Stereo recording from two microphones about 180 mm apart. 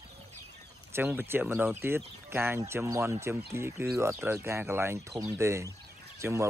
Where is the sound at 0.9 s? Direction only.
10° right (ahead or behind).